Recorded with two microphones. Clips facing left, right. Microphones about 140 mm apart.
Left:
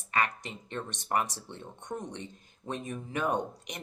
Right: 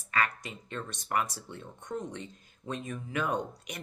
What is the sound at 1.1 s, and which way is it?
Speech, 30° left (ahead or behind).